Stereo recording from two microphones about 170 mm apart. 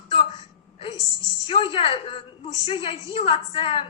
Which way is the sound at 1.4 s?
30° left (ahead or behind).